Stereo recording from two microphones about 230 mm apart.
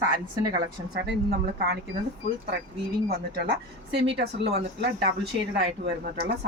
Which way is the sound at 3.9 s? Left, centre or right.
Right.